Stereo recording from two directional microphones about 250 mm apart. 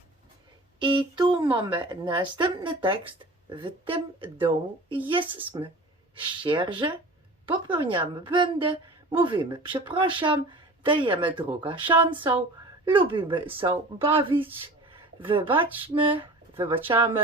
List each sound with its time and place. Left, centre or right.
0.8 s a woman's voice: centre
14.4 s a sound: right
15.3 s a woman's voice: centre